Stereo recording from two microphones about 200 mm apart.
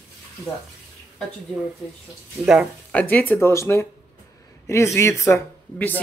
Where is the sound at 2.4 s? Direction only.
5° right (ahead or behind).